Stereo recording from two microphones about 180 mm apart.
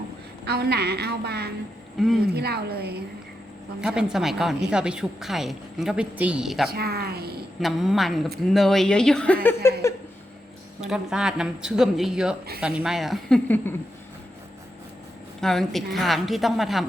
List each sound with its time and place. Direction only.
0.4 s a woman's voice: 65° right (ahead or behind)
3.8 s a woman's voice: 5° right (ahead or behind)
6.7 s a woman's voice: 60° right (ahead or behind)
7.6 s a woman's voice: centre (ahead or behind)
10.8 s a woman's voice: 5° right (ahead or behind)
15.4 s a woman's voice: centre (ahead or behind)